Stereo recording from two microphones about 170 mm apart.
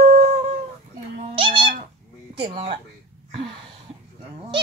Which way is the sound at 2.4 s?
35° right (ahead or behind).